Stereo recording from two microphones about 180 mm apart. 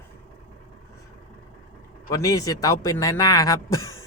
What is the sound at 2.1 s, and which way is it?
Speech, 20° left (ahead or behind).